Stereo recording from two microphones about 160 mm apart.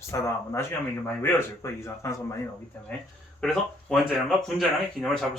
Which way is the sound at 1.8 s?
20° left (ahead or behind).